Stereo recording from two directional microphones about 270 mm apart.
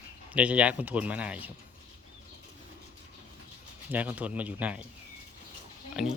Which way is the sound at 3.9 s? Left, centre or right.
Centre.